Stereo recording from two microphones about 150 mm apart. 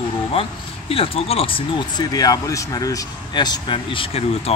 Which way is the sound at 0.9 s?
40° left (ahead or behind).